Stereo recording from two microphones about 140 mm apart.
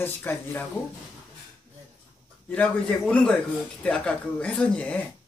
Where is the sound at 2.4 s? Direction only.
10° left (ahead or behind).